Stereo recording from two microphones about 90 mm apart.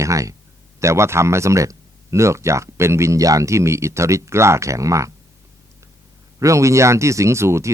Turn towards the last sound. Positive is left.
turn(degrees=-30)  # may be behind; listen again after turning